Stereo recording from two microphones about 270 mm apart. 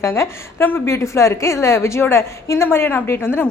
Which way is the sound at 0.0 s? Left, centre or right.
Centre.